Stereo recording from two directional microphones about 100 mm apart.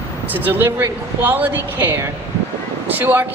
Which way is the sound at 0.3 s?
20° right (ahead or behind).